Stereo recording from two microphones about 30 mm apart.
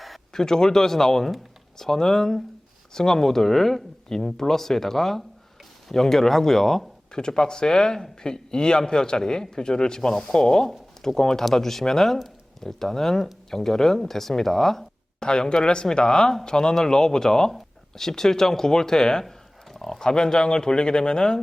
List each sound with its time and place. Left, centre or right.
0.3 s speech: centre
7.1 s speech: left
10.7 s a sound: centre
11.2 s speech: centre
15.2 s speech: left
19.2 s a sound: centre
19.9 s speech: left